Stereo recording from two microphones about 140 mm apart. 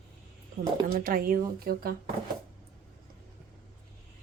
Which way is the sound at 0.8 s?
90° right.